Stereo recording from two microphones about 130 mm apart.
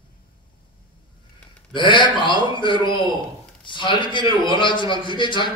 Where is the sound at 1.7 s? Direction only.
40° left (ahead or behind).